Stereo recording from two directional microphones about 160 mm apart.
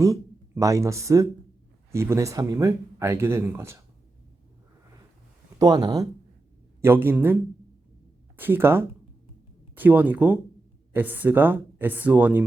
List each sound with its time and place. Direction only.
0.0 s speech: 20° right (ahead or behind)
5.5 s speech: 25° right (ahead or behind)
6.8 s speech: 15° right (ahead or behind)
8.4 s speech: 15° right (ahead or behind)